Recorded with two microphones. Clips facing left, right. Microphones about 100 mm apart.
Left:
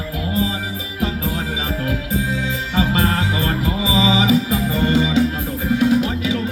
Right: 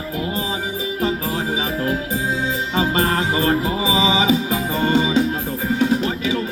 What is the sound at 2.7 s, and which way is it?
Music, 35° right (ahead or behind).